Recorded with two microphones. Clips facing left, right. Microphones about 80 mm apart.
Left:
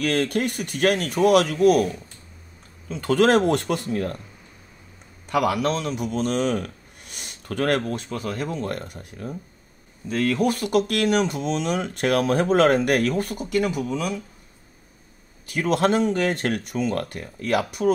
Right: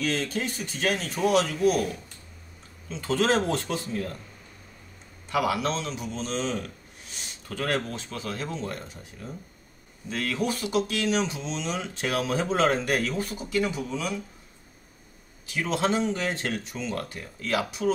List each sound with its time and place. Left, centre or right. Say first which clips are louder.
0.0 s speech: left 6 dB; left
2.9 s speech: left 6 dB; left
5.4 s a man's voice: left 4 dB; left
8.1 s speech: left 6 dB; left
8.5 s speech: left 5 dB; left
10.0 s speech: left 7 dB; left
15.4 s speech: left 5 dB; left